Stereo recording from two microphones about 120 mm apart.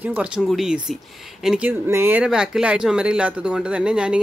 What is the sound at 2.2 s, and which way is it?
Speech, 5° right (ahead or behind).